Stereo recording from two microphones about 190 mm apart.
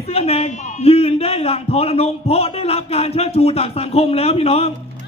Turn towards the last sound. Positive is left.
turn(degrees=30)  # may be behind; listen again after turning